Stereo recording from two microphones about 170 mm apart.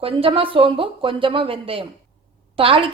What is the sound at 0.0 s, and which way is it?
A woman's voice, 35° right (ahead or behind).